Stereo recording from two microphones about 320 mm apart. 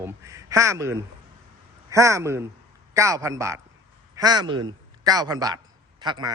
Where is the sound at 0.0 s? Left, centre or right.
Centre.